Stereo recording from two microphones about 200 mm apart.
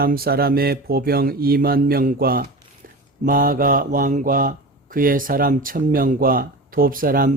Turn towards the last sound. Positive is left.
turn(degrees=-45)  # may be behind; listen again after turning